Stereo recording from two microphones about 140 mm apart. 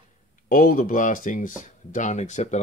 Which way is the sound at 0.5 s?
85° left.